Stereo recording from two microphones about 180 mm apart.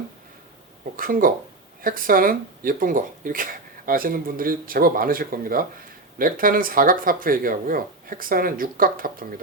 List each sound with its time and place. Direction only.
0.9 s speech: 50° right (ahead or behind)